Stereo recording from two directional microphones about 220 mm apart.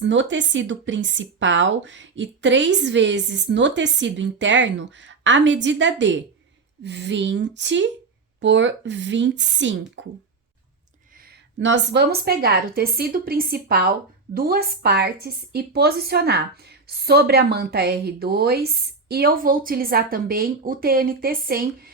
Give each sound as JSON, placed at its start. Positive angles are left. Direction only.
{"t": 0.0, "sound": "a woman's voice", "side_deg": -55}
{"t": 11.6, "sound": "a woman's voice", "side_deg": -55}